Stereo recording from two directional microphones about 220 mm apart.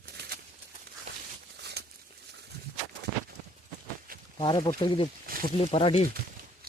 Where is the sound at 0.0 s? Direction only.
45° right (ahead or behind).